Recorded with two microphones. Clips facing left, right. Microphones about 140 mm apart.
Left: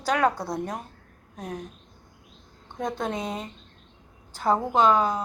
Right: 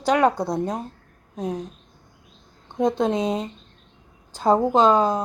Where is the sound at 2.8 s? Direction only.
20° right (ahead or behind).